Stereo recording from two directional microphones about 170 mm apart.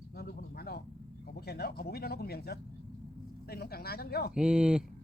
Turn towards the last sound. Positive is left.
turn(degrees=-5)  # may be behind; listen again after turning